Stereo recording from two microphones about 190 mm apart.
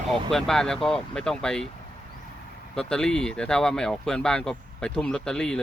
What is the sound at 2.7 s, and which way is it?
Speech, 5° left (ahead or behind).